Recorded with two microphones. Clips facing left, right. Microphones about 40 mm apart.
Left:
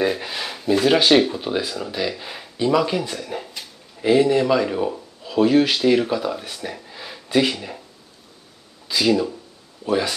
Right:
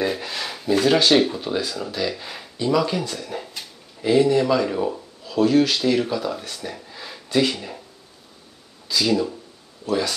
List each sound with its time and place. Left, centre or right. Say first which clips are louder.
0.0 s speech: left 2 dB; centre
4.0 s speech: left 1 dB; centre
8.8 s speech: left 2 dB; centre